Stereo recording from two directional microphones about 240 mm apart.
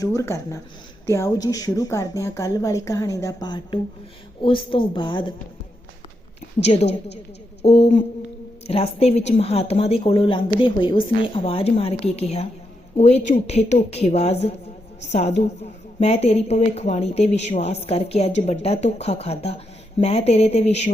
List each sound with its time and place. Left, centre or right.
0.0 s a woman's voice: centre
6.6 s speech: left